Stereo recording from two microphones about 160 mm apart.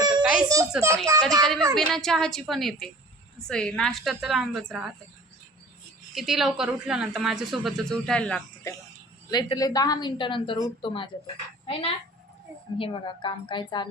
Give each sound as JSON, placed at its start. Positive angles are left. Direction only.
{"t": 0.2, "sound": "a sound", "side_deg": -5}
{"t": 0.4, "sound": "a child's voice", "side_deg": -20}
{"t": 1.7, "sound": "speech", "side_deg": 0}
{"t": 6.1, "sound": "speech", "side_deg": 0}
{"t": 9.3, "sound": "a woman's voice", "side_deg": 25}